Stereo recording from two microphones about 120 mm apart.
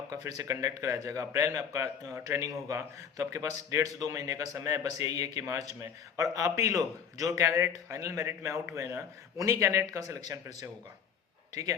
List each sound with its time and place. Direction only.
0.1 s a man's voice: 30° right (ahead or behind)